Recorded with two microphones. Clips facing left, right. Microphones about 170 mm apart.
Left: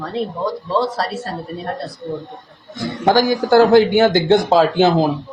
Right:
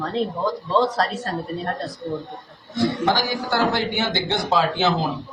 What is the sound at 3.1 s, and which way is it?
Speech, 45° left (ahead or behind).